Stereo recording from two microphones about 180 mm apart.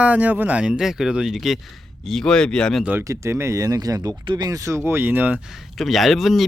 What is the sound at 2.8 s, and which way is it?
Speech, 15° right (ahead or behind).